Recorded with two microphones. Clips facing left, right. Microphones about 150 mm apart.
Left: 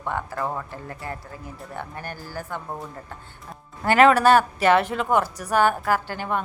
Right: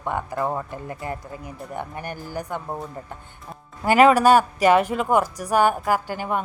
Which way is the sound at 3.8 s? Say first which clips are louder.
Right 1 dB; 10° right (ahead or behind).